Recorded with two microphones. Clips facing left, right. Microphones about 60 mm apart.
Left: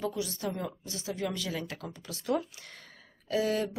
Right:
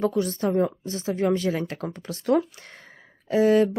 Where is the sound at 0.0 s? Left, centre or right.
Right.